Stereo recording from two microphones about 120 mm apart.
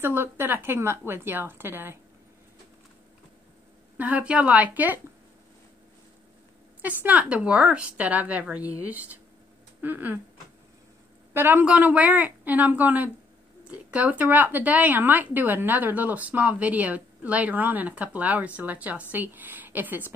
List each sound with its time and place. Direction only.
0.0 s a woman's voice: 20° right (ahead or behind)
4.0 s a woman's voice: 10° right (ahead or behind)
6.8 s a woman's voice: 15° right (ahead or behind)
9.8 s speech: 15° right (ahead or behind)
11.3 s a woman's voice: 15° right (ahead or behind)